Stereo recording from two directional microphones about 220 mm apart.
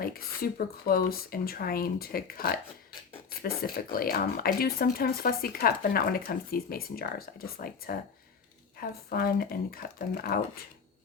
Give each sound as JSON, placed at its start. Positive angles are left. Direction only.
{"t": 0.0, "sound": "speech", "side_deg": 40}